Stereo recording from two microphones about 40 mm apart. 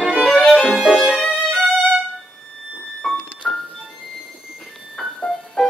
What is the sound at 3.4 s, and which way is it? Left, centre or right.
Music, centre.